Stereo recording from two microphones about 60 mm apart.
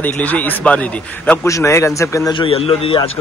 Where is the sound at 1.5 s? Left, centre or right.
Left.